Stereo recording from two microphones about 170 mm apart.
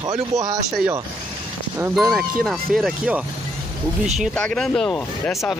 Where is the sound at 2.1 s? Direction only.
Centre (ahead or behind).